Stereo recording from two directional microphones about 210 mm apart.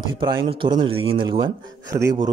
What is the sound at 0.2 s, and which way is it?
A man's voice, 25° right (ahead or behind).